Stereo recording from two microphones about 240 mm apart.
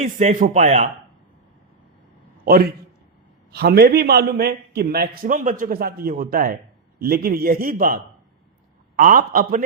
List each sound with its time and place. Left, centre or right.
0.0 s a man's voice: right
2.4 s a man's voice: right